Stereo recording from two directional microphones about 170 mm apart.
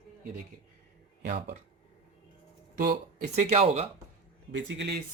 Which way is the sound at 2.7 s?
65° right (ahead or behind).